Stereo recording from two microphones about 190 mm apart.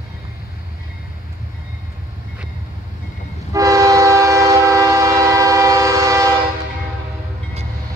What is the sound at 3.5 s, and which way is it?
Train, 15° right (ahead or behind).